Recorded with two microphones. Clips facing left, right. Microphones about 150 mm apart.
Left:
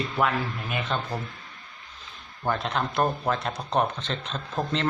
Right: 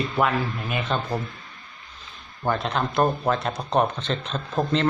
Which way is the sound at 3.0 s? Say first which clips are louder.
Right 4 dB; 30° right (ahead or behind).